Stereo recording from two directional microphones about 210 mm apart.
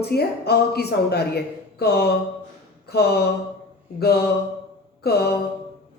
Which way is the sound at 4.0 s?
50° left (ahead or behind).